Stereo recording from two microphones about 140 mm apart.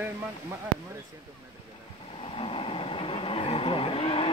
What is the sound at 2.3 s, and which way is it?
Vehicle, 40° left (ahead or behind).